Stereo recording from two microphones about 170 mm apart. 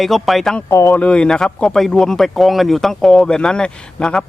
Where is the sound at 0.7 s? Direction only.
20° left (ahead or behind).